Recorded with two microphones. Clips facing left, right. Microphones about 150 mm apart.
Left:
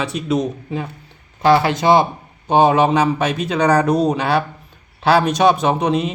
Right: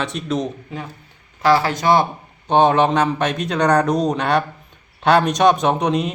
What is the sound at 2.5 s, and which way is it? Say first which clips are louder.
A man's voice: left 1 dB; 5° left (ahead or behind).